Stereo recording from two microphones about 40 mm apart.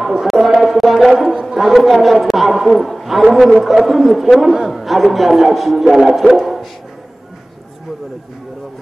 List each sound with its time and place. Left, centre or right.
0.0 s a sound: centre
0.6 s music: centre
1.1 s music: centre
1.5 s a man's voice: centre